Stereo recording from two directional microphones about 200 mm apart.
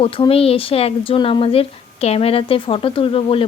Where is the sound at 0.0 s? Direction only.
30° left (ahead or behind).